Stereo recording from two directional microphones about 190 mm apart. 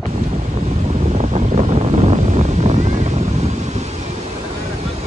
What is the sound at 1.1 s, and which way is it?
Wind noise, 35° right (ahead or behind).